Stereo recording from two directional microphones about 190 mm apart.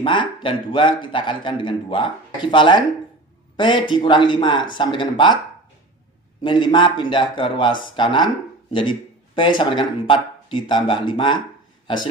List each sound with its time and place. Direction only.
0.0 s a man's voice: 25° left (ahead or behind)
6.4 s a man's voice: 25° left (ahead or behind)